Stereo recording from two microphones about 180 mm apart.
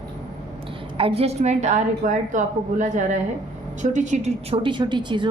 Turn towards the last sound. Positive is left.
turn(degrees=-25)  # may be behind; listen again after turning